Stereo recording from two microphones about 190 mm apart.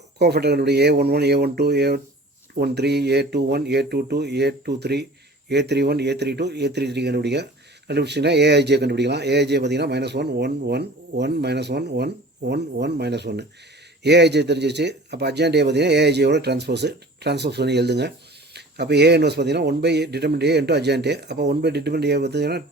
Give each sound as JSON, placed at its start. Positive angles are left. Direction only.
{"t": 0.2, "sound": "speech", "side_deg": -60}